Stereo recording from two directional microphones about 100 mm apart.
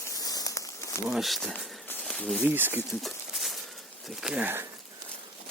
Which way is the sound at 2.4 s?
20° right (ahead or behind).